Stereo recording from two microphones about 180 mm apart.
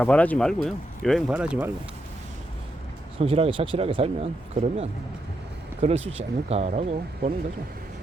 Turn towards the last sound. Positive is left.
turn(degrees=-40)  # may be behind; listen again after turning